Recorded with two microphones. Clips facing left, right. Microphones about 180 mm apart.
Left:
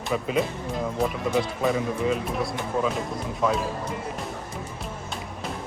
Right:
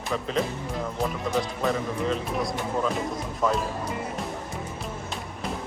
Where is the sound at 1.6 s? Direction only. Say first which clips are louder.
Left 2 dB; 5° left (ahead or behind).